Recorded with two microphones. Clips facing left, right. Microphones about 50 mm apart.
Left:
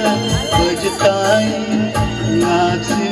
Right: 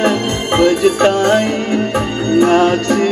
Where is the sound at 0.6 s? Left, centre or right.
Right.